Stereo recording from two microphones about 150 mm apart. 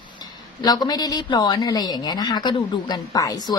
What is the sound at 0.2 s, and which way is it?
A woman's voice, 25° left (ahead or behind).